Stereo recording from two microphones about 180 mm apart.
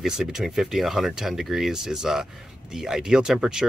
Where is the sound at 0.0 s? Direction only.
5° right (ahead or behind).